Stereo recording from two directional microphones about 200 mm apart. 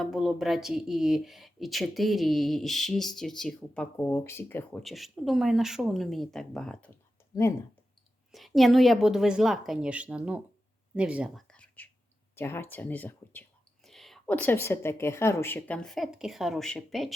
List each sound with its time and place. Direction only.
0.0 s speech: centre (ahead or behind)
4.8 s speech: centre (ahead or behind)
7.3 s speech: 20° left (ahead or behind)
8.3 s speech: centre (ahead or behind)